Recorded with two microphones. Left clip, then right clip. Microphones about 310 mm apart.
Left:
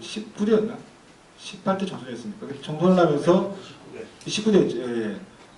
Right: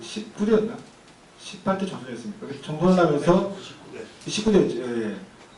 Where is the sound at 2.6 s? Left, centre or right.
Left.